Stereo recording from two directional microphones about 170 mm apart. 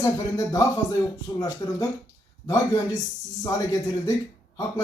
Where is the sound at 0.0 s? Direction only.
20° left (ahead or behind).